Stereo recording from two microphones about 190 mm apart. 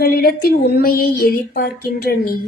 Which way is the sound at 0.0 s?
55° left (ahead or behind).